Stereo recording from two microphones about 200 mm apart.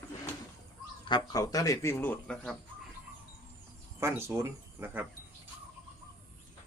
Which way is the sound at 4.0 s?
15° right (ahead or behind).